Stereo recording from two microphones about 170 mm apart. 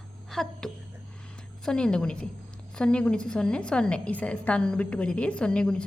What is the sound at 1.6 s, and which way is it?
A woman's voice, 5° left (ahead or behind).